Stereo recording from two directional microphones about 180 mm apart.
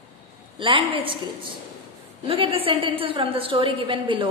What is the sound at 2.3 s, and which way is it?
A woman's voice, 30° right (ahead or behind).